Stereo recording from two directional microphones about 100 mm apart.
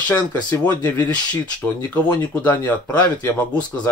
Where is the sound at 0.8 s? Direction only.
15° left (ahead or behind).